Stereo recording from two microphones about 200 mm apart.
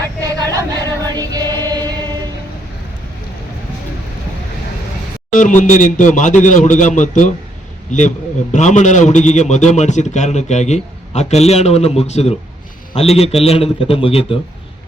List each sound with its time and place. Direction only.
0.2 s choir: 20° right (ahead or behind)
5.3 s a man's voice: 40° left (ahead or behind)